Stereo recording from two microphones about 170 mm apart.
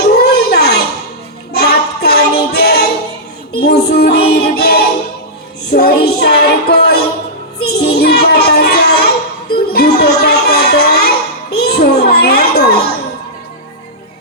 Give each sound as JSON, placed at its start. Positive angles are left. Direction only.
{"t": 0.0, "sound": "a sound", "side_deg": 70}
{"t": 1.5, "sound": "child singing", "side_deg": 70}
{"t": 3.5, "sound": "music", "side_deg": 70}
{"t": 5.6, "sound": "child singing", "side_deg": 70}
{"t": 9.7, "sound": "music", "side_deg": 70}
{"t": 11.5, "sound": "children playing", "side_deg": 70}